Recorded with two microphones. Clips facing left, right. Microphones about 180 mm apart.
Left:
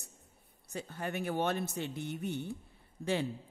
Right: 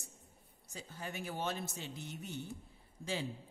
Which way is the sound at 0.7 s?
65° left (ahead or behind).